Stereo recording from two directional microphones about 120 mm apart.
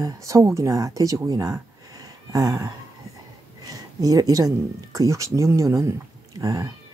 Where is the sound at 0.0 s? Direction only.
25° right (ahead or behind).